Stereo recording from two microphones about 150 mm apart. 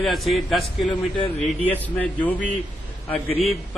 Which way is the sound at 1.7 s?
10° left (ahead or behind).